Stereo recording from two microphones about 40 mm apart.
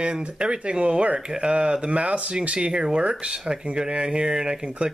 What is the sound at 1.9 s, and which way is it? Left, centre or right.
Speech, right.